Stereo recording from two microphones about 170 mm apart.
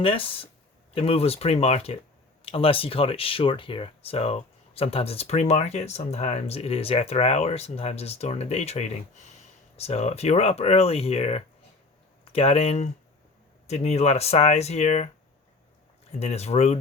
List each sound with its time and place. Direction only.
0.0 s speech: 30° left (ahead or behind)
16.2 s speech: 40° left (ahead or behind)